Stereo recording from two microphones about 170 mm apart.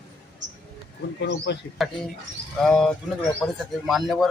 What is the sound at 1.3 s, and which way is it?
Speech, 90° left.